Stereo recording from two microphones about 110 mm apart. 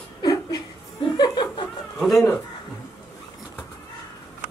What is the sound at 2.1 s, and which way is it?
Speech, 25° left (ahead or behind).